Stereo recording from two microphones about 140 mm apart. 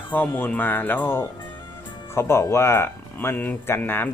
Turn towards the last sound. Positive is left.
turn(degrees=15)  # may be behind; listen again after turning